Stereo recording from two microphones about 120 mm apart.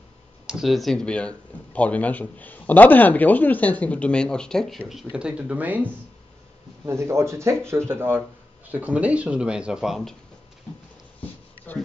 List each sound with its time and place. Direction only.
0.5 s speech: centre (ahead or behind)
6.9 s speech: 25° right (ahead or behind); by 10.1 s centre (ahead or behind)
11.1 s a sound: 15° left (ahead or behind)